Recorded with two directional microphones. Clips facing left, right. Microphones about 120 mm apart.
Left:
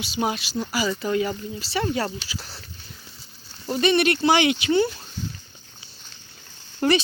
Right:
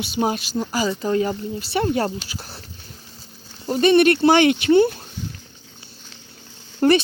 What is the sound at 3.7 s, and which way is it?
Speech, 50° right (ahead or behind).